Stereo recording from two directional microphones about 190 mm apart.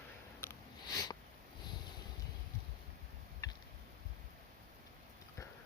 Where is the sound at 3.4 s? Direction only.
20° left (ahead or behind).